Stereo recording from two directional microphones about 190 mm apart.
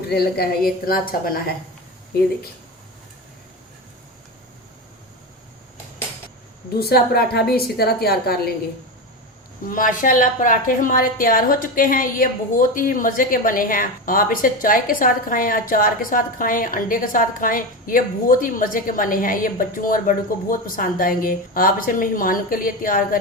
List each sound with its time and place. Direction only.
0.9 s a woman's voice: 50° left (ahead or behind)
6.7 s a woman's voice: 55° left (ahead or behind)
9.6 s a woman's voice: 45° left (ahead or behind)